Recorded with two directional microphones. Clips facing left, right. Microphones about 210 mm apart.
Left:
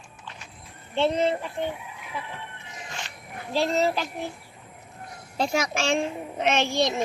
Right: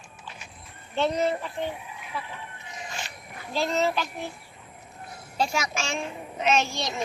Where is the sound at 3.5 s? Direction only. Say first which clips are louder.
Left 2 dB; 35° left (ahead or behind).